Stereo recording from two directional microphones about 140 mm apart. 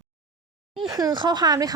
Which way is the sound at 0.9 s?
30° right (ahead or behind).